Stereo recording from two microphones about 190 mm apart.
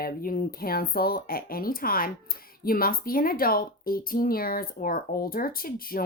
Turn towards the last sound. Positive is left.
turn(degrees=50)  # may be behind; listen again after turning